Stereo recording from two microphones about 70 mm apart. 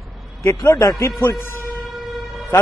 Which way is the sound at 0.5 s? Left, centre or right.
Left.